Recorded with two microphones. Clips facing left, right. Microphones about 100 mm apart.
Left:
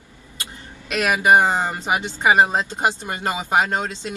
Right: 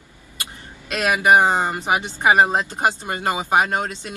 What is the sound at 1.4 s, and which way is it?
A man's voice, 20° right (ahead or behind).